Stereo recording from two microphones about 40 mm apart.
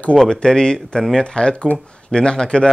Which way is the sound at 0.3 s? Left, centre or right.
Centre.